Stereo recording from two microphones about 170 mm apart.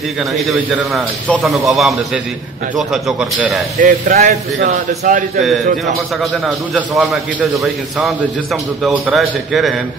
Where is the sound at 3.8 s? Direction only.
50° right (ahead or behind).